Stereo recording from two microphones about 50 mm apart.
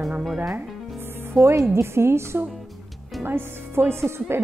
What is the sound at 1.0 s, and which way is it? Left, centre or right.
Music, right.